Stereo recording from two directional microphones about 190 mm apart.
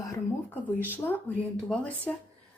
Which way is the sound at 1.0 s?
5° left (ahead or behind).